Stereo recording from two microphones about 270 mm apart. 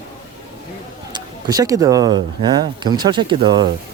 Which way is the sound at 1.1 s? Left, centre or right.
Centre.